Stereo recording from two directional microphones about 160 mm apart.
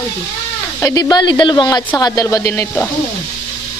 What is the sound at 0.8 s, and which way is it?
Speech, 20° left (ahead or behind).